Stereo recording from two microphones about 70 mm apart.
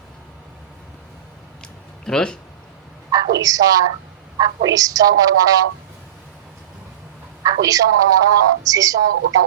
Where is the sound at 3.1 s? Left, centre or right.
Right.